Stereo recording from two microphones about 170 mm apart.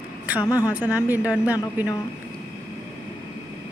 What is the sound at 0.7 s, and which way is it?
Speech, 10° right (ahead or behind).